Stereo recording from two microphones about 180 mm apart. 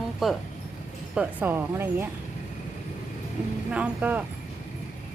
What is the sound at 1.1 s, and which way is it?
Speech, 10° right (ahead or behind).